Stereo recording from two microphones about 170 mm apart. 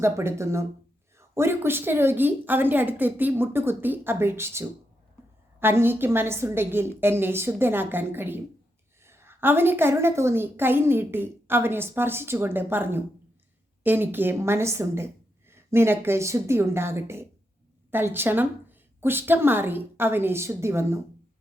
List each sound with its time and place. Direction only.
0.0 s a woman's voice: 15° right (ahead or behind)